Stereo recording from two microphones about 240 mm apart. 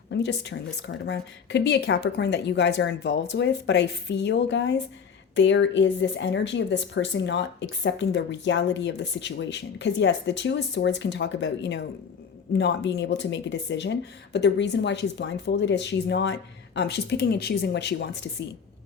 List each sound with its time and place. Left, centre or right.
0.1 s speech: left